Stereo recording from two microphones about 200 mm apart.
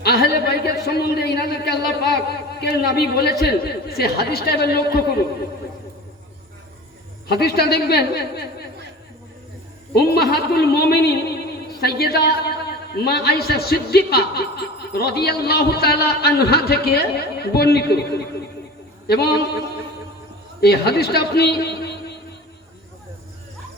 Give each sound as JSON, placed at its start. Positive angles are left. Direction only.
{"t": 0.0, "sound": "a man's voice", "side_deg": 50}
{"t": 7.3, "sound": "a man's voice", "side_deg": 55}
{"t": 9.9, "sound": "a man's voice", "side_deg": 55}
{"t": 20.6, "sound": "a man's voice", "side_deg": 55}